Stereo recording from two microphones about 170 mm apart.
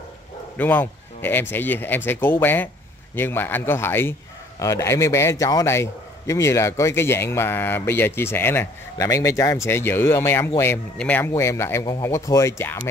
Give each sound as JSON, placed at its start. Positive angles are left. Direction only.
{"t": 0.6, "sound": "a man's voice", "side_deg": 10}